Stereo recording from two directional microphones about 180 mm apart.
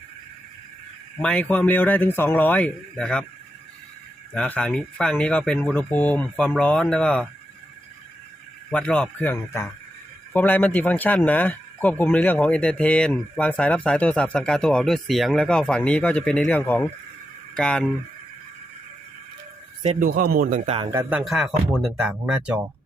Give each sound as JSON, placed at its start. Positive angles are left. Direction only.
{"t": 1.2, "sound": "speech", "side_deg": 5}
{"t": 4.4, "sound": "speech", "side_deg": 5}
{"t": 8.7, "sound": "speech", "side_deg": 5}
{"t": 20.0, "sound": "speech", "side_deg": -55}
{"t": 20.7, "sound": "a man's voice", "side_deg": -30}
{"t": 20.9, "sound": "speech", "side_deg": -10}